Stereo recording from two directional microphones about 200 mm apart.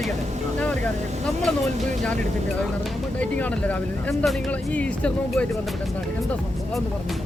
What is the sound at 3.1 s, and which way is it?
Speech, 5° left (ahead or behind).